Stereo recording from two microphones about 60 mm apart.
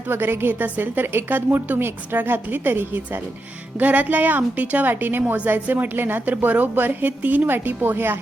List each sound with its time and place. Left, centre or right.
0.1 s a woman's voice: right